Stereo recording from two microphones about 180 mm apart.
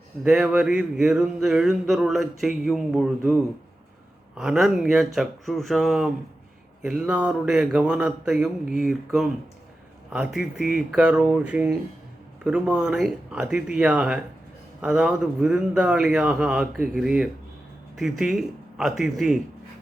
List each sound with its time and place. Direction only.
0.3 s speech: 5° right (ahead or behind)
4.4 s speech: centre (ahead or behind)